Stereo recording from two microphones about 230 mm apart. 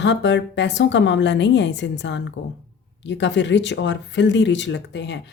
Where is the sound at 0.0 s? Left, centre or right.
Left.